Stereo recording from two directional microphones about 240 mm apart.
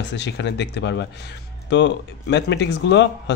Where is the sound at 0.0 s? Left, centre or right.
Left.